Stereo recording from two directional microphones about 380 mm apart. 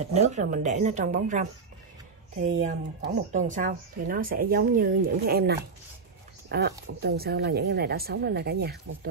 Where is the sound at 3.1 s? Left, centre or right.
Centre.